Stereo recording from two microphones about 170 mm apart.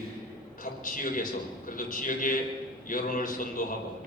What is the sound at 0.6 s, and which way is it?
A man's voice, 55° left (ahead or behind).